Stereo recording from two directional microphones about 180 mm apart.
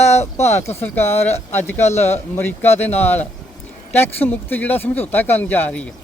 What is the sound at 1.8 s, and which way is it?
Speech, 40° left (ahead or behind).